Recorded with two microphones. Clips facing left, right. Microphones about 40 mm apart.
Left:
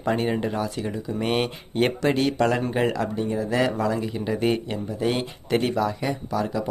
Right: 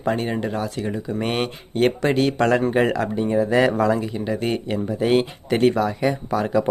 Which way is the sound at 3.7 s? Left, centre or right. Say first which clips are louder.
Right 5 dB; right.